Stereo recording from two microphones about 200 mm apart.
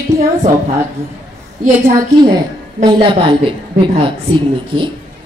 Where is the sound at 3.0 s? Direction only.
25° right (ahead or behind).